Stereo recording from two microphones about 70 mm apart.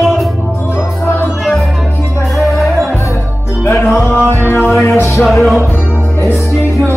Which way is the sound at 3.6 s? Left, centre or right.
Left.